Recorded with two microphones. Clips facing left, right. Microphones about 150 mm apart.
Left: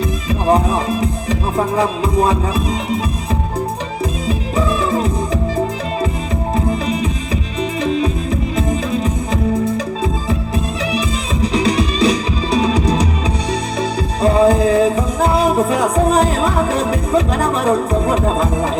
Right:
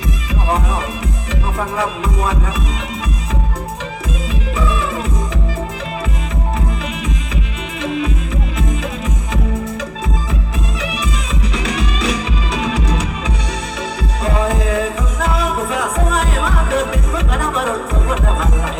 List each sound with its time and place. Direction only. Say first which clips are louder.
0.4 s music: left 6 dB; 35° left (ahead or behind)
4.3 s music: left 3 dB; 35° left (ahead or behind)
6.7 s music: left 6 dB; 35° left (ahead or behind)
11.4 s music: left 7 dB; 35° left (ahead or behind)
14.2 s music: left 7 dB; 35° left (ahead or behind)